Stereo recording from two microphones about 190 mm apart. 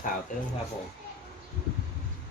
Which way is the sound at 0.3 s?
40° left (ahead or behind).